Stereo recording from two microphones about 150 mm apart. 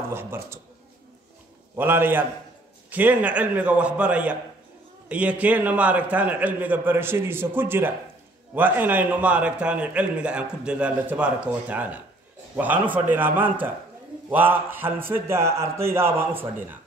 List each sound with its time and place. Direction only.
0.1 s a man's voice: 15° right (ahead or behind)
1.8 s a man's voice: 15° right (ahead or behind)